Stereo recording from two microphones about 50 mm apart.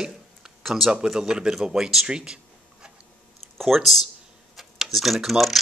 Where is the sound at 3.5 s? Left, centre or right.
Centre.